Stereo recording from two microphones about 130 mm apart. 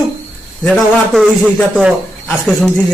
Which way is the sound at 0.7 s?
Centre (ahead or behind).